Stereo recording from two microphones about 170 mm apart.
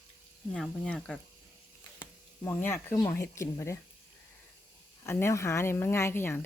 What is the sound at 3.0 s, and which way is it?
Speech, 20° left (ahead or behind).